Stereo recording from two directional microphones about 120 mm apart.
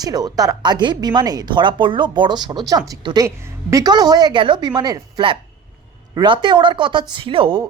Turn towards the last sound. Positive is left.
turn(degrees=-45)  # may be behind; listen again after turning